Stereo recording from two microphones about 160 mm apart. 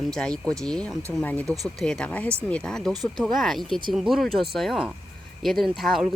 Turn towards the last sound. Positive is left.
turn(degrees=0)  # may be behind; listen again after turning